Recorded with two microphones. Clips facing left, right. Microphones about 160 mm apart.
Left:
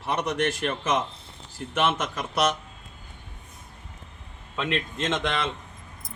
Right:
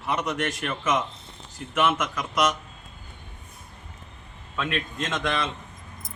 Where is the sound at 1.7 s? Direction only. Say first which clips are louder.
Right 1 dB; 30° left (ahead or behind).